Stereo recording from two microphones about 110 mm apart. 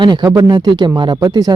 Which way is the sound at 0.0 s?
40° right (ahead or behind).